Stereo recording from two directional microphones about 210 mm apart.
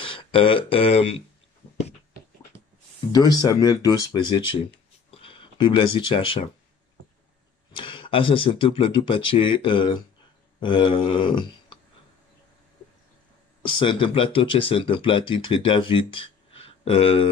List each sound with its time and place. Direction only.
0.0 s speech: 25° left (ahead or behind)
3.1 s speech: 20° left (ahead or behind)
7.7 s speech: 25° left (ahead or behind)
13.6 s speech: 25° left (ahead or behind)